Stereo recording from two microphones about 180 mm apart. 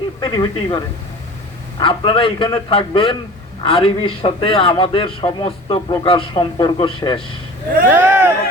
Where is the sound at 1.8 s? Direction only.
30° left (ahead or behind).